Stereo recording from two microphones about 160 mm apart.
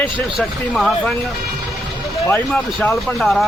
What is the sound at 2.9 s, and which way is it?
Speech, centre (ahead or behind).